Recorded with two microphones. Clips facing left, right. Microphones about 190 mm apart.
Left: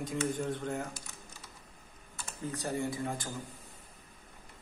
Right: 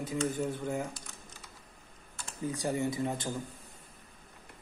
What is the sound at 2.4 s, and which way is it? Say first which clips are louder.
Speech: right 3 dB; 15° right (ahead or behind).